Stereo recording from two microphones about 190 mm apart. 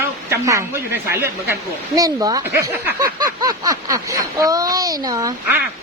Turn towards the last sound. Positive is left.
turn(degrees=-15)  # may be behind; listen again after turning